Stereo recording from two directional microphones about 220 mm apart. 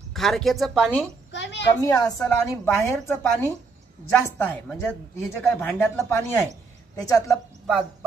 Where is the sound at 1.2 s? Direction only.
55° left (ahead or behind).